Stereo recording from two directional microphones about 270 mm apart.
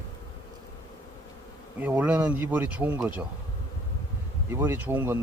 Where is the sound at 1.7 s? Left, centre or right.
Centre.